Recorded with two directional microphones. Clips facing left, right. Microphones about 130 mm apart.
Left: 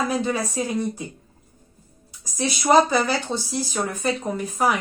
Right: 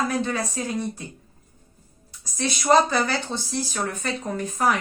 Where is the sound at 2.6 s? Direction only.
10° left (ahead or behind).